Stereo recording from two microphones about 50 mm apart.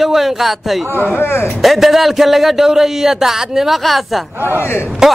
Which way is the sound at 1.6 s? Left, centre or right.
Centre.